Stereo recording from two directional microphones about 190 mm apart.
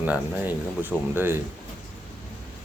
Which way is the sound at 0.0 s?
10° right (ahead or behind).